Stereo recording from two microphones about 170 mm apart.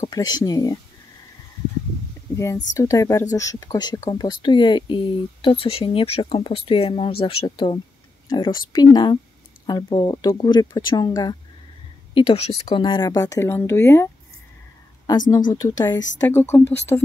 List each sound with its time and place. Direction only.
0.1 s speech: 20° left (ahead or behind)
2.3 s speech: 20° left (ahead or behind)
15.5 s speech: 25° left (ahead or behind)